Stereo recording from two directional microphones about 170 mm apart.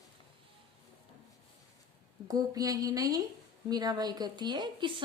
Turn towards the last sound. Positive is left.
turn(degrees=-25)  # may be behind; listen again after turning